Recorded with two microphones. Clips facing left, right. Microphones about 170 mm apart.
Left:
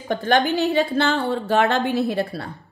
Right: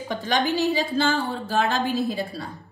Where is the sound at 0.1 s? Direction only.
55° left (ahead or behind).